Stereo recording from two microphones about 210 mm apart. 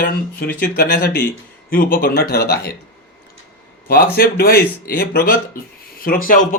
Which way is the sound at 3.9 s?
45° left (ahead or behind).